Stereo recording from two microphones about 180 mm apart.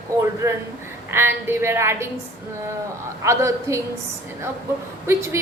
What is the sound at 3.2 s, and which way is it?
Speech, 15° right (ahead or behind).